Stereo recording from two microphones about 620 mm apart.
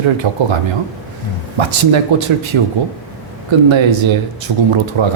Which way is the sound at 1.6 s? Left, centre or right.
Right.